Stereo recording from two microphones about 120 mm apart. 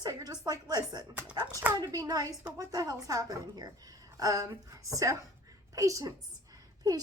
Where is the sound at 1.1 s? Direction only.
10° right (ahead or behind).